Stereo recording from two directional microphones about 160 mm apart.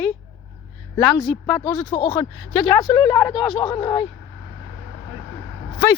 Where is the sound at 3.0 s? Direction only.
30° left (ahead or behind).